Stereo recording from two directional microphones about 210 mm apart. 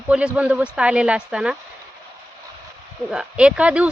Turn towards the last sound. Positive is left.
turn(degrees=-5)  # may be behind; listen again after turning